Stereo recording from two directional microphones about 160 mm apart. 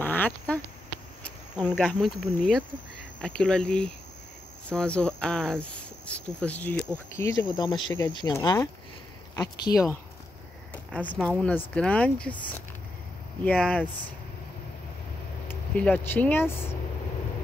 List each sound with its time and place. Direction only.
0.0 s a sound: 10° left (ahead or behind)
2.0 s speech: centre (ahead or behind); by 7.3 s 15° left (ahead or behind)
7.4 s speech: 30° left (ahead or behind)
8.3 s speech: 20° left (ahead or behind)
10.7 s a sound: 10° left (ahead or behind)
11.1 s speech: 5° left (ahead or behind)
15.4 s speech: 10° left (ahead or behind)